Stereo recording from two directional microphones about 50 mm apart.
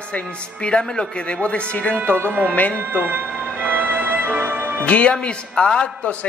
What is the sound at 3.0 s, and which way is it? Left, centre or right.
Music, right.